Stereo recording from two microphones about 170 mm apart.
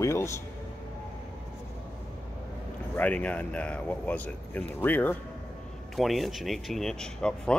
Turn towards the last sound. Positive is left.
turn(degrees=5)  # may be behind; listen again after turning